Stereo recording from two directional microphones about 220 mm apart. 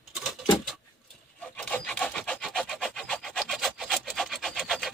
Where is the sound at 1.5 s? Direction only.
5° left (ahead or behind).